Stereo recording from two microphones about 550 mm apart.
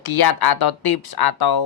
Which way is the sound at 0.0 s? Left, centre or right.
Left.